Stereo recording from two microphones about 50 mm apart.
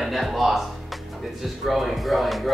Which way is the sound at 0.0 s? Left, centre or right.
Centre.